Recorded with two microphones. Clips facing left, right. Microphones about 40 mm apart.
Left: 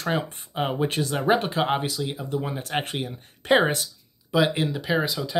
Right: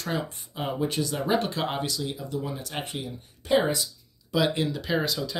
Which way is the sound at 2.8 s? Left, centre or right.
Left.